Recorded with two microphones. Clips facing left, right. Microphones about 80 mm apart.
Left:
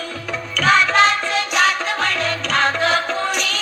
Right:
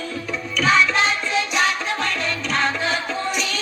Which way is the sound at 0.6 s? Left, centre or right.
Left.